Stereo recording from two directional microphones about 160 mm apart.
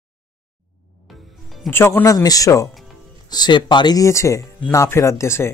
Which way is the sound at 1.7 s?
15° left (ahead or behind).